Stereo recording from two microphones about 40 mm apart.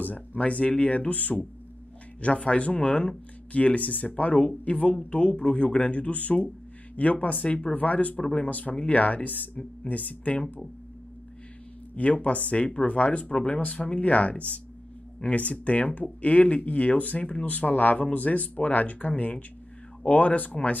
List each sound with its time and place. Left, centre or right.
0.0 s speech: left
0.4 s speech: left
7.4 s speech: left
7.7 s speech: left
11.9 s speech: left